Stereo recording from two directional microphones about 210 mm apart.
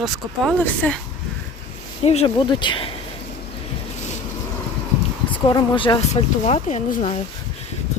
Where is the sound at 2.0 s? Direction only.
30° left (ahead or behind).